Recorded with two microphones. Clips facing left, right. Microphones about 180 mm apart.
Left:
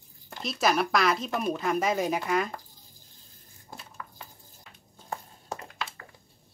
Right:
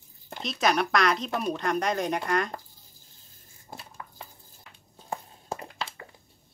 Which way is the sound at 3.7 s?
25° right (ahead or behind).